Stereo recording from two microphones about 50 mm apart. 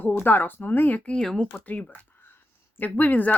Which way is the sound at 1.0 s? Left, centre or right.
Left.